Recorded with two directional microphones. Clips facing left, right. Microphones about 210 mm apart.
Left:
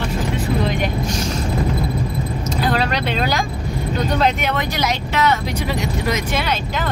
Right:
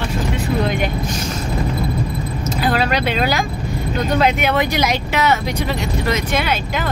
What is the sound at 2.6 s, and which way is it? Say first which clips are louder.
Speech: right 2 dB; 5° right (ahead or behind).